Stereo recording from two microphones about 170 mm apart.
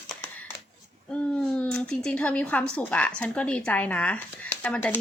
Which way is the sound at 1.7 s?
5° left (ahead or behind).